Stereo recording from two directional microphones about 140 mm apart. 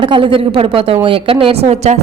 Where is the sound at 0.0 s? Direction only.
35° right (ahead or behind).